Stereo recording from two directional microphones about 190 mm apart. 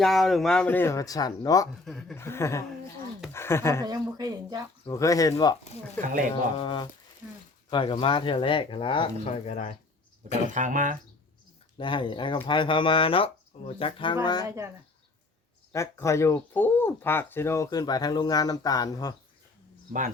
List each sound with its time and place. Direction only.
0.0 s speech: centre (ahead or behind); by 1.6 s 20° left (ahead or behind)
1.8 s speech: centre (ahead or behind)
2.1 s speech: 15° left (ahead or behind)
3.8 s speech: 20° right (ahead or behind)
4.9 s speech: 15° left (ahead or behind)
6.0 s speech: 5° left (ahead or behind)
6.6 s speech: 25° left (ahead or behind)
10.5 s speech: 40° right (ahead or behind)
11.8 s speech: 25° left (ahead or behind)
14.4 s speech: 15° right (ahead or behind)
15.7 s speech: 15° left (ahead or behind)